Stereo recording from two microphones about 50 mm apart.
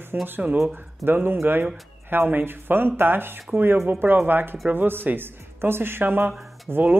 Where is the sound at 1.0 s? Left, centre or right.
Right.